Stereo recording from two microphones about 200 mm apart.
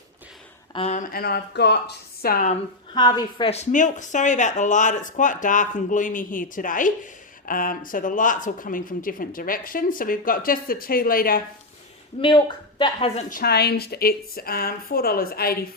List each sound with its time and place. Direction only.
0.7 s a sound: 30° left (ahead or behind)
1.1 s a woman's voice: 50° left (ahead or behind)
2.9 s speech: 20° left (ahead or behind); by 11.4 s 45° left (ahead or behind)
12.8 s a woman's voice: 25° left (ahead or behind)
13.3 s a woman's voice: 50° left (ahead or behind)